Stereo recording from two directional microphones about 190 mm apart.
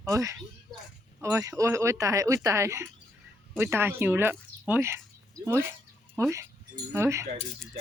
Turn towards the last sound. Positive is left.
turn(degrees=-15)  # may be behind; listen again after turning